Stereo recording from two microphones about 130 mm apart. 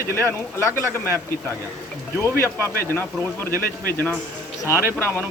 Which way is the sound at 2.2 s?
20° left (ahead or behind).